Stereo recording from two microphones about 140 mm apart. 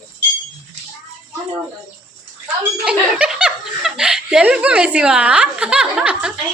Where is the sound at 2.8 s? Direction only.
5° right (ahead or behind).